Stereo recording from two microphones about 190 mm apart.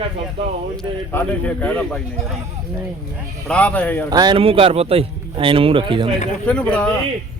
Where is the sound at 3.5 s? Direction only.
5° left (ahead or behind).